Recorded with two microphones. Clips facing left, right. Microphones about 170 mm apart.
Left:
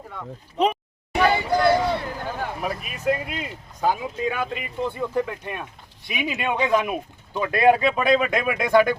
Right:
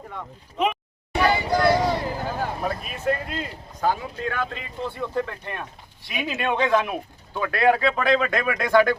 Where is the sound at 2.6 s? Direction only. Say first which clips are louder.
Left 2 dB; 10° left (ahead or behind).